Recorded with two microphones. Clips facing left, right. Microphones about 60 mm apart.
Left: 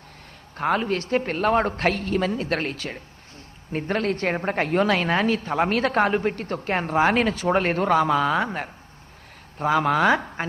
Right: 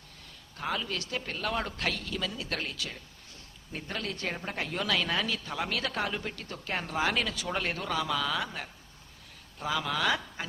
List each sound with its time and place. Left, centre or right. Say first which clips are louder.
0.5 s a woman's voice: left 11 dB; left